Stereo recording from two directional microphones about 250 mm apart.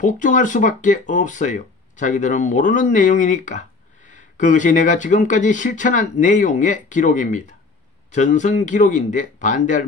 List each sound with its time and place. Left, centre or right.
0.0 s speech: left